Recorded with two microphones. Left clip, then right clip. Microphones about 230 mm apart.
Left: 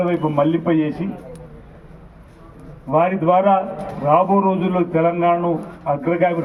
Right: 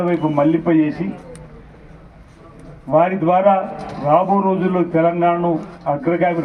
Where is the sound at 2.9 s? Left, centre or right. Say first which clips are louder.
Right 1 dB; right.